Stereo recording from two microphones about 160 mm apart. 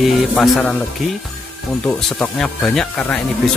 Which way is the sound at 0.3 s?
5° left (ahead or behind).